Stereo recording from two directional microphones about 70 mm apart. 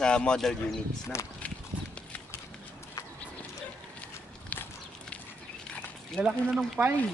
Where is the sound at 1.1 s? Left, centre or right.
Left.